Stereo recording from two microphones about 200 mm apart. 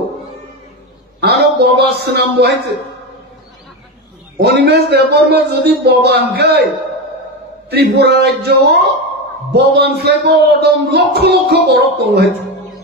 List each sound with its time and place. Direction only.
1.2 s a sound: 55° right (ahead or behind)
2.0 s speech: 55° right (ahead or behind)
4.4 s speech: 55° right (ahead or behind)
7.7 s speech: 55° right (ahead or behind)